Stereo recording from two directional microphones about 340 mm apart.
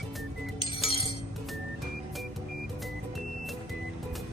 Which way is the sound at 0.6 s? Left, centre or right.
Centre.